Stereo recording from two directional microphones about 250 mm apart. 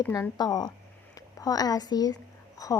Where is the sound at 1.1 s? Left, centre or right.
Centre.